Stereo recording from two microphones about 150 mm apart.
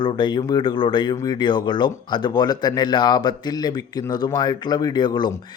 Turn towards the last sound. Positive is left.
turn(degrees=30)  # may be behind; listen again after turning